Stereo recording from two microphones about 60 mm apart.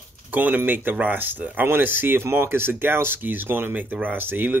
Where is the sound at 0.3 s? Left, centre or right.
Right.